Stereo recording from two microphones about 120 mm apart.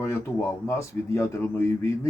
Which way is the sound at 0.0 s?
25° left (ahead or behind).